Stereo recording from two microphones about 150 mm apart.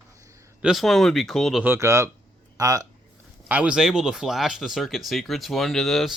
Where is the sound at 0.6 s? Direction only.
Centre (ahead or behind).